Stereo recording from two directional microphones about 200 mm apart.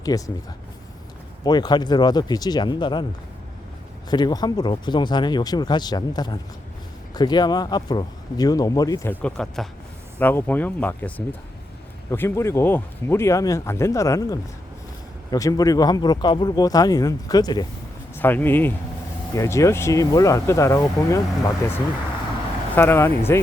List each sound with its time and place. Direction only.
0.1 s speech: 20° left (ahead or behind)
1.5 s speech: 20° left (ahead or behind)
4.1 s speech: 20° left (ahead or behind)
18.2 s speech: 10° left (ahead or behind)
22.7 s speech: 10° left (ahead or behind)